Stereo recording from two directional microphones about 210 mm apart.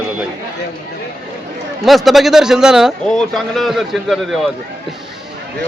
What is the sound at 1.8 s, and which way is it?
A man's voice, centre (ahead or behind).